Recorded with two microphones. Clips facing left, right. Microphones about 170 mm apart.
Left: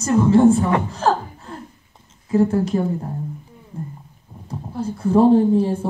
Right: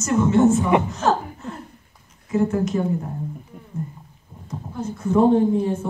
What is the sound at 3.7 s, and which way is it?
Roaring cats, 30° left (ahead or behind).